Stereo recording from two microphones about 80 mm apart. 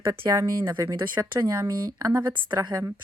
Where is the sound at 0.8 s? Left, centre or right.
Right.